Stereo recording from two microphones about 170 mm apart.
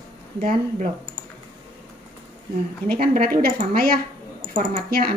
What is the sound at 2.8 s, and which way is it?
Speech, 60° right (ahead or behind).